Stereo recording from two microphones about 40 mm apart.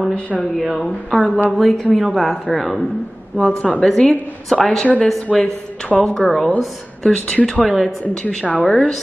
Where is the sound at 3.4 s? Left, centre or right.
Left.